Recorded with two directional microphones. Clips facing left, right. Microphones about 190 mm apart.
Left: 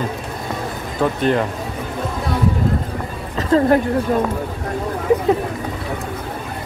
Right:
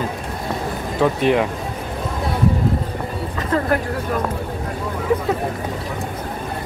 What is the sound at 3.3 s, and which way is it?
Speech, 25° left (ahead or behind).